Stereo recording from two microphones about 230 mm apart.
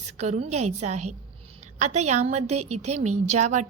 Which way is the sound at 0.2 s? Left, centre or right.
Right.